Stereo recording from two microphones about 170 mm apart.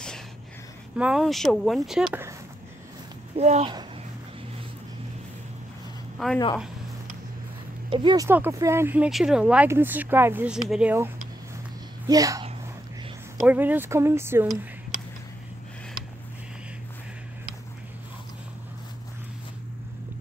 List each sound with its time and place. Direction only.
0.9 s speech: 5° right (ahead or behind)
3.3 s speech: 40° right (ahead or behind)
6.1 s speech: centre (ahead or behind)
7.9 s speech: 25° right (ahead or behind)
8.3 s speech: 15° right (ahead or behind)
12.1 s speech: 20° right (ahead or behind)
13.4 s speech: 10° right (ahead or behind)